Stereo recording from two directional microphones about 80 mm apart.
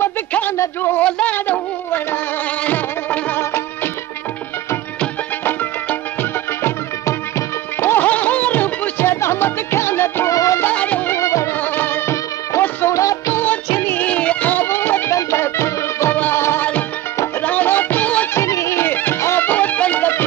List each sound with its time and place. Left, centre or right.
0.3 s a sound: left
2.6 s music: left
5.4 s music: left
10.6 s music: centre
11.1 s music: left
11.6 s music: left
13.4 s music: left
18.3 s music: left